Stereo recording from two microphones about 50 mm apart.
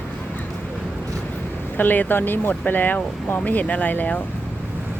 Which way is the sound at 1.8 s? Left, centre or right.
Left.